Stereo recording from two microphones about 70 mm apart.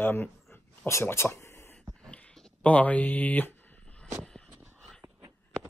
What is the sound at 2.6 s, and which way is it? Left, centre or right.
Speech, left.